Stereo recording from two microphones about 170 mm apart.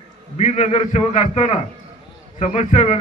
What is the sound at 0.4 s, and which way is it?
A man's voice, 40° left (ahead or behind).